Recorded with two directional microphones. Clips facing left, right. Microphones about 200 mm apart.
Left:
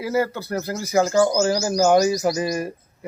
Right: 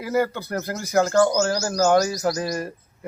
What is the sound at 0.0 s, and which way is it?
Speech, 5° left (ahead or behind).